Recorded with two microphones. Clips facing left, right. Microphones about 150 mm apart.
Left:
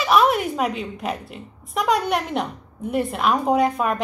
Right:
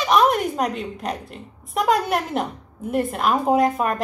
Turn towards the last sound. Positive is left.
turn(degrees=0)  # may be behind; listen again after turning